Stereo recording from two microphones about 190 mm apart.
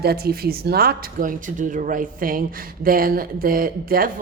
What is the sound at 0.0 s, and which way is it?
Speech, 55° right (ahead or behind).